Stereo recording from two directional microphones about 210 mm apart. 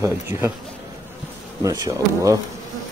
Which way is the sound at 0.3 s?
30° left (ahead or behind).